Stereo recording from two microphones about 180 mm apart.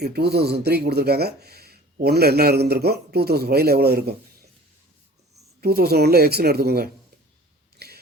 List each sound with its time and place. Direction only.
0.0 s speech: 60° right (ahead or behind)
5.5 s speech: 60° right (ahead or behind)
7.8 s a sound: 60° right (ahead or behind)